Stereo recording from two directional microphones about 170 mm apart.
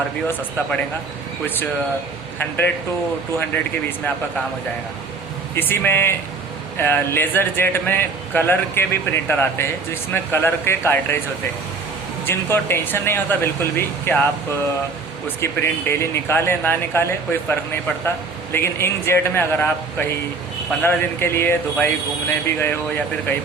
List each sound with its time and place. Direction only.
3.3 s speech: 10° left (ahead or behind)
5.5 s speech: 10° left (ahead or behind)
12.2 s speech: 15° left (ahead or behind)
15.4 s speech: 15° left (ahead or behind)